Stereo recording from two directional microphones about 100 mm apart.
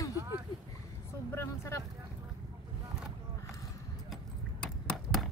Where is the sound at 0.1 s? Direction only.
30° right (ahead or behind).